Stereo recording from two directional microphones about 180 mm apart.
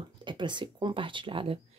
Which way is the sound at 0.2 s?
25° right (ahead or behind).